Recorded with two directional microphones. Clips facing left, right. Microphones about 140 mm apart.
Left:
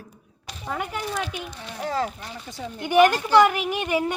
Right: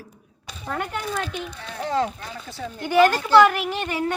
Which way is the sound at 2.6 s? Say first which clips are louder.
Even; 20° left (ahead or behind).